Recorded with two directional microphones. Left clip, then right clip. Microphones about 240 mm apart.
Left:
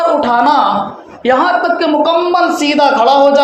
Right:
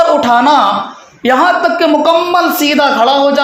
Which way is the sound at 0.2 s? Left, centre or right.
Right.